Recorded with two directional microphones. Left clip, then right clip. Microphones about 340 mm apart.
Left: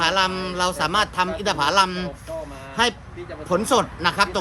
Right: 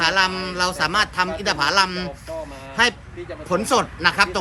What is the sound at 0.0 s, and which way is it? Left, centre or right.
Speech, centre.